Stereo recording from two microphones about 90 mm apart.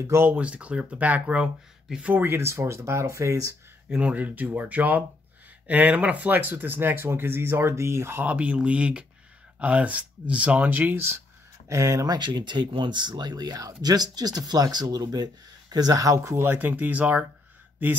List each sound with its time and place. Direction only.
0.0 s speech: 30° right (ahead or behind)
0.3 s speech: 15° right (ahead or behind); by 3.5 s 35° right (ahead or behind)
3.9 s speech: 15° right (ahead or behind)
11.7 s speech: 35° right (ahead or behind)
12.1 s speech: 55° right (ahead or behind); by 17.3 s 15° right (ahead or behind)